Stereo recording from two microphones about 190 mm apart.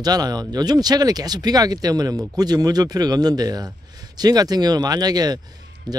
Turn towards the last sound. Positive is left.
turn(degrees=-20)  # may be behind; listen again after turning